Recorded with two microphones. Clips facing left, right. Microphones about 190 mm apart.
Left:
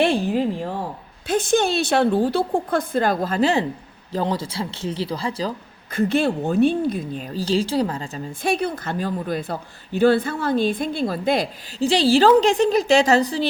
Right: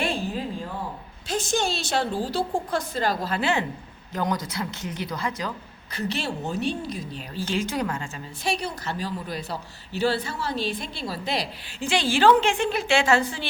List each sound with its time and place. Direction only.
0.0 s a sound: 70° left (ahead or behind)
1.3 s a woman's voice: 55° left (ahead or behind); by 5.5 s 30° left (ahead or behind)
5.9 s a woman's voice: 50° left (ahead or behind); by 8.2 s 35° left (ahead or behind)
8.4 s a woman's voice: 55° left (ahead or behind)
11.8 s a woman's voice: 35° left (ahead or behind)